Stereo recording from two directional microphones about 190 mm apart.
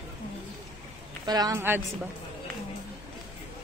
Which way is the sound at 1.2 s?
20° right (ahead or behind).